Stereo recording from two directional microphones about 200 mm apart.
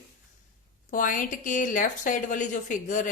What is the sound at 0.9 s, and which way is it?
Speech, 40° left (ahead or behind).